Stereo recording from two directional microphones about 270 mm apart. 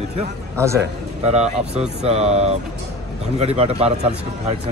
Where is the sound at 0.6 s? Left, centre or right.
Centre.